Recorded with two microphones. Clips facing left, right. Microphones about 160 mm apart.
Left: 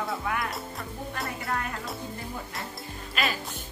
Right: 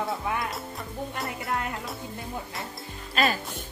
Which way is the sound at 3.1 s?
45° right (ahead or behind).